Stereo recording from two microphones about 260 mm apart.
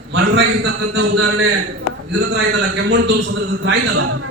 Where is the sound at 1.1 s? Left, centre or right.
Right.